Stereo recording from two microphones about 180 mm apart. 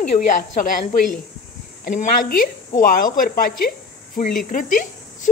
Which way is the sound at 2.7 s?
50° left (ahead or behind).